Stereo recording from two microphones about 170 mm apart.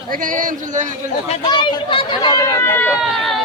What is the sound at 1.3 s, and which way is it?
Speech, 30° left (ahead or behind).